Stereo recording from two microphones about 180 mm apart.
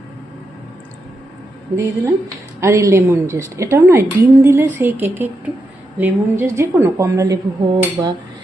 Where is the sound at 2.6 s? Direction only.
15° right (ahead or behind).